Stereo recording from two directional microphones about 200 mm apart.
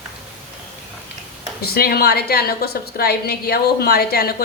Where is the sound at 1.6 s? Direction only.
50° left (ahead or behind).